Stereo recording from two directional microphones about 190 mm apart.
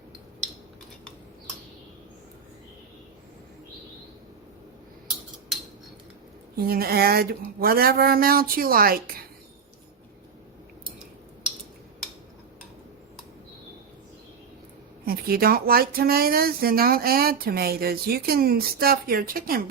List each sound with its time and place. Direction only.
6.7 s speech: 55° right (ahead or behind)
15.0 s speech: 50° right (ahead or behind)